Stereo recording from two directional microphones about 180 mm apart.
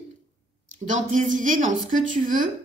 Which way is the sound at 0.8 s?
45° right (ahead or behind).